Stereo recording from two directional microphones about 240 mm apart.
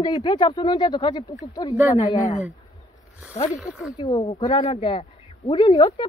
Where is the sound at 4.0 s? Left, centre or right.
Left.